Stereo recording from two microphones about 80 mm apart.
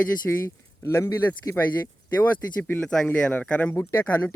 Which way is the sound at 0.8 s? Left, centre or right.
Left.